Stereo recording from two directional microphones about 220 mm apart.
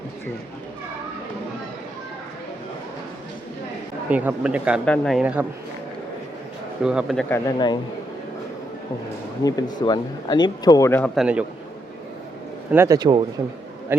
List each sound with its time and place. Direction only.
4.1 s speech: 5° right (ahead or behind)
6.8 s speech: centre (ahead or behind)
7.3 s speech: 15° left (ahead or behind)
9.4 s speech: 15° left (ahead or behind); by 11.4 s 5° right (ahead or behind)
12.7 s speech: 15° right (ahead or behind)